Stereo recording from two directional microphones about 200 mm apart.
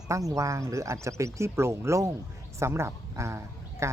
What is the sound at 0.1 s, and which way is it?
Speech, 15° right (ahead or behind).